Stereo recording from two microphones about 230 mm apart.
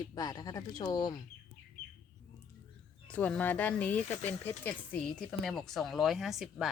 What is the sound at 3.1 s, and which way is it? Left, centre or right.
A woman's voice, centre.